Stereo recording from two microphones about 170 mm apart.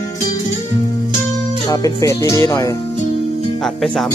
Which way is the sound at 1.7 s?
20° left (ahead or behind).